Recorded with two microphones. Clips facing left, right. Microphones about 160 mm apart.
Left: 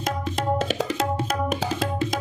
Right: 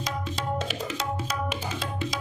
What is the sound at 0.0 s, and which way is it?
Music, 50° left (ahead or behind).